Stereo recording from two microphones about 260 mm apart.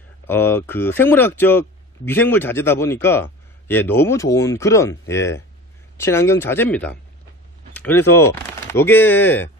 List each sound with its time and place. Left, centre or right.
0.3 s speech: centre